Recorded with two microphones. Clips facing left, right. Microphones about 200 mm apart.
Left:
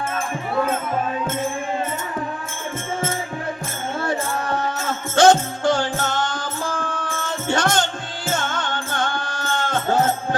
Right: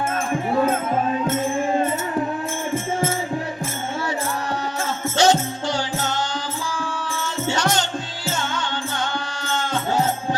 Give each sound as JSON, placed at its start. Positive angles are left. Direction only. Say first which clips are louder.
{"t": 5.1, "sound": "music", "louder": "left 4 dB", "side_deg": 50}